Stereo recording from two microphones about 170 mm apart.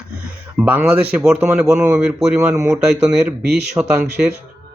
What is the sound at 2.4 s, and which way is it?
Speech, 20° right (ahead or behind).